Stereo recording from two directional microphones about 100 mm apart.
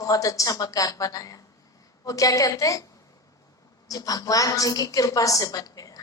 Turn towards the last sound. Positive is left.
turn(degrees=35)  # may be behind; listen again after turning